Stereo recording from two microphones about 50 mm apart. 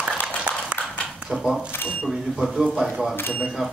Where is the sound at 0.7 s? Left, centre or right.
Right.